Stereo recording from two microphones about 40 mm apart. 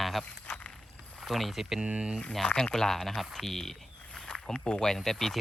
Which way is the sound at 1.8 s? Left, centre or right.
Right.